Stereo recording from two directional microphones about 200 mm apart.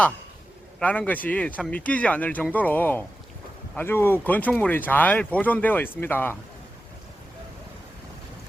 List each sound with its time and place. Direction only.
0.8 s speech: 10° left (ahead or behind)